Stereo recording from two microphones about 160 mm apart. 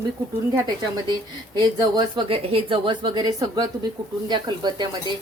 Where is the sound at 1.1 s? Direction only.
25° right (ahead or behind).